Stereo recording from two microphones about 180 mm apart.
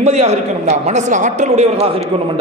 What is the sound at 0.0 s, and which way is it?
A man's voice, 35° right (ahead or behind).